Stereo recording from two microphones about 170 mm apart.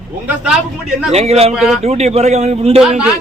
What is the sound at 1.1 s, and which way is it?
Speech, 40° right (ahead or behind).